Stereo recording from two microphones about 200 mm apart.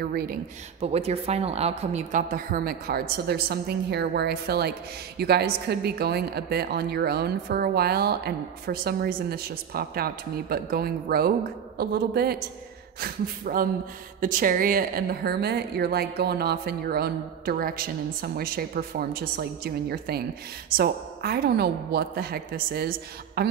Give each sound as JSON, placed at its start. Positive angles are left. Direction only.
{"t": 0.0, "sound": "a woman's voice", "side_deg": -50}
{"t": 0.7, "sound": "a woman's voice", "side_deg": -30}